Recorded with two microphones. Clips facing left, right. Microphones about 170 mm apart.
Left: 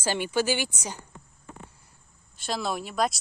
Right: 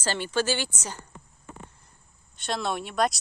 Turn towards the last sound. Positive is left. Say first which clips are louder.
# right 1 dB
turn(degrees=0)  # may be behind; listen again after turning